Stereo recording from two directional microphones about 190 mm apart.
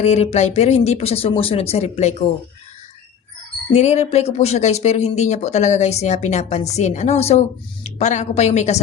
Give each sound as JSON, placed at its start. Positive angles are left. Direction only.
{"t": 0.0, "sound": "speech", "side_deg": 35}
{"t": 3.7, "sound": "speech", "side_deg": 35}